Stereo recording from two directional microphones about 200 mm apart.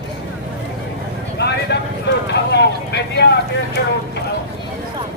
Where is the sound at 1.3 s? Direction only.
55° left (ahead or behind).